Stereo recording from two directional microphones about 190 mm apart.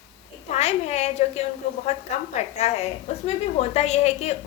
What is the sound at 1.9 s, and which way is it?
A woman's voice, 35° left (ahead or behind).